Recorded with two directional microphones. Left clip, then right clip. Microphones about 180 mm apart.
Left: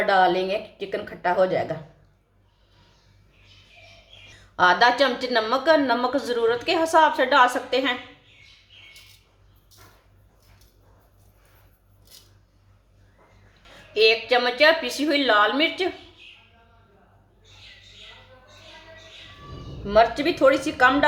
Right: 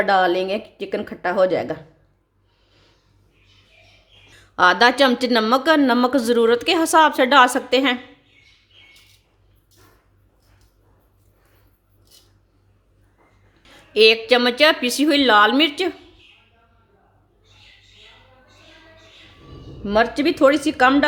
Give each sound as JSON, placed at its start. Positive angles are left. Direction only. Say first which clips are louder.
{"t": 0.0, "sound": "speech", "louder": "right 2 dB", "side_deg": -60}
{"t": 4.4, "sound": "speech", "louder": "right 3 dB", "side_deg": -65}
{"t": 13.9, "sound": "speech", "louder": "right 5 dB", "side_deg": -60}
{"t": 19.9, "sound": "speech", "louder": "even", "side_deg": -60}